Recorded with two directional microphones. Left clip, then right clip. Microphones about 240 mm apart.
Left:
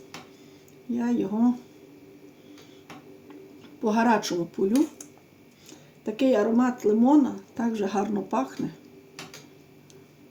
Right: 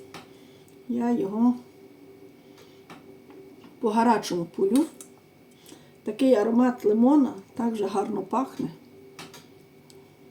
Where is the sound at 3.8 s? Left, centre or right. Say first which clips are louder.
Right 1 dB; left.